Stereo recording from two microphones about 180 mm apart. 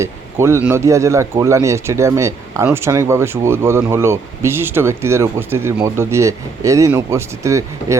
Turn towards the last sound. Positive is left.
turn(degrees=-15)  # may be behind; listen again after turning